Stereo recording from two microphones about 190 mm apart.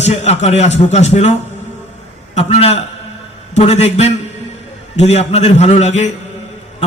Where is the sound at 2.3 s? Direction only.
35° left (ahead or behind).